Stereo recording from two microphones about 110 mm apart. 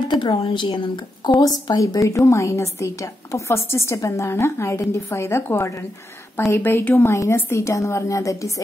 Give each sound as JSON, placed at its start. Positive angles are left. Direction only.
{"t": 0.1, "sound": "a sound", "side_deg": 45}
{"t": 0.4, "sound": "a woman's voice", "side_deg": 55}
{"t": 1.4, "sound": "a woman's voice", "side_deg": 35}